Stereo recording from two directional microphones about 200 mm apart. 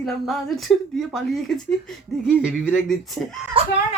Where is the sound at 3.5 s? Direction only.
25° right (ahead or behind).